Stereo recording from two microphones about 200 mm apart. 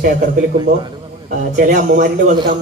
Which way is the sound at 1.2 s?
45° right (ahead or behind).